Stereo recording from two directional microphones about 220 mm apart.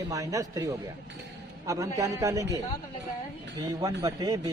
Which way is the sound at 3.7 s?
15° right (ahead or behind).